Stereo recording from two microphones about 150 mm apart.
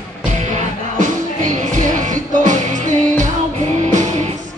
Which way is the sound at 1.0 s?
60° right (ahead or behind).